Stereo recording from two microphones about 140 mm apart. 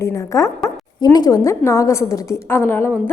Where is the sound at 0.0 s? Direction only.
20° left (ahead or behind).